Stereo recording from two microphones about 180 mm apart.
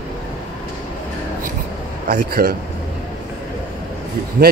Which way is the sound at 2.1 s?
50° right (ahead or behind).